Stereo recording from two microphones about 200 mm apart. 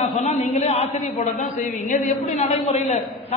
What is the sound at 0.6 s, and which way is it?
A man's voice, 30° left (ahead or behind).